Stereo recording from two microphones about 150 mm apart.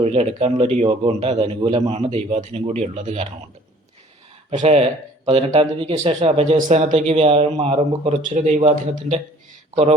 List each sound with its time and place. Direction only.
0.0 s a man's voice: 45° right (ahead or behind)
4.5 s a man's voice: 45° right (ahead or behind)